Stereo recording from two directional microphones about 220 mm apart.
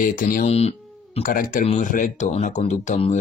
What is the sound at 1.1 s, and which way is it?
Speech, 40° left (ahead or behind).